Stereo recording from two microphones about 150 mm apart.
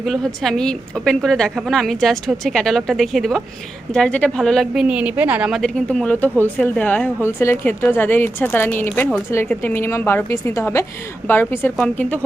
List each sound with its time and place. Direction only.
0.0 s a woman's voice: centre (ahead or behind)